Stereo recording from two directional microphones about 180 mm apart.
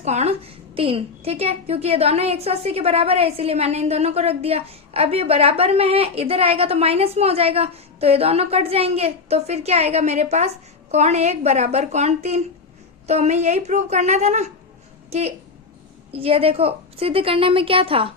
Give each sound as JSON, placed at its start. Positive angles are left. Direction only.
{"t": 0.0, "sound": "a woman's voice", "side_deg": -35}